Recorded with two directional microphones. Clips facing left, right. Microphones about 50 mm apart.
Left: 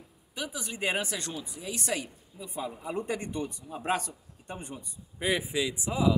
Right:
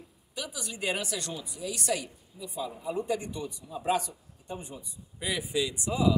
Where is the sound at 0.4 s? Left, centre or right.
Left.